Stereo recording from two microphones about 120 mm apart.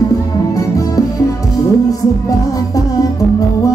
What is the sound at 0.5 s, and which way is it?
Music, 30° left (ahead or behind).